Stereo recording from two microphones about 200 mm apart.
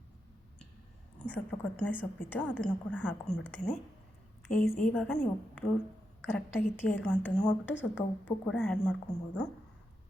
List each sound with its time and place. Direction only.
1.3 s a woman's voice: 5° left (ahead or behind)
7.7 s speech: 65° left (ahead or behind)
8.4 s a woman's voice: 5° left (ahead or behind)